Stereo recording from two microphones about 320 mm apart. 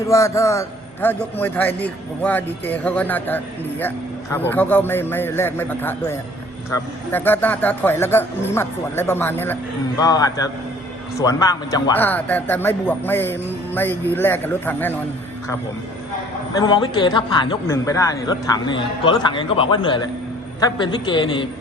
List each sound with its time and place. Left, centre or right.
0.1 s a man's voice: centre
16.6 s a man's voice: centre